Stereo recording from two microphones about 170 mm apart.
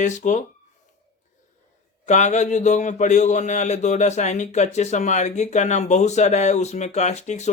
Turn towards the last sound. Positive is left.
turn(degrees=45)  # may be behind; listen again after turning